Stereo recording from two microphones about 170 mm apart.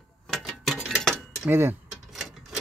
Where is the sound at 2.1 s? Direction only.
Centre (ahead or behind).